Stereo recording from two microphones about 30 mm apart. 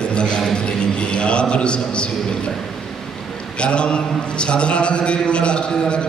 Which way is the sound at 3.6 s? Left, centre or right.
Left.